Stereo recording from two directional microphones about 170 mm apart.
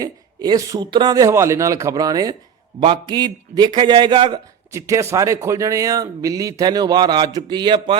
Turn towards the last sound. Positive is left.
turn(degrees=-30)  # may be behind; listen again after turning